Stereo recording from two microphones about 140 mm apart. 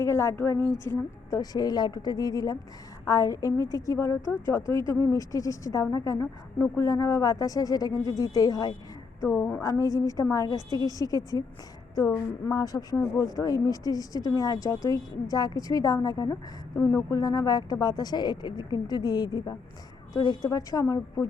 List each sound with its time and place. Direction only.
0.0 s a woman's voice: 20° left (ahead or behind)